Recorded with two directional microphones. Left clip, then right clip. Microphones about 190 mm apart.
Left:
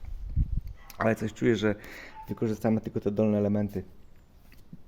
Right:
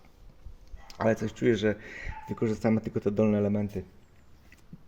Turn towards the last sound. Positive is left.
turn(degrees=20)  # may be behind; listen again after turning